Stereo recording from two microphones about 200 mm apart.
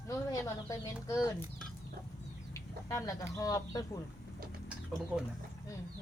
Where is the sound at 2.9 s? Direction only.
15° left (ahead or behind).